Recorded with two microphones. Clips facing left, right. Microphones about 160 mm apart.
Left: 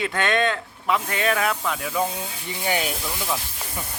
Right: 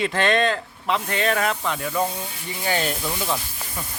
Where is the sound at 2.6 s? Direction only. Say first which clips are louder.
Even; 15° left (ahead or behind).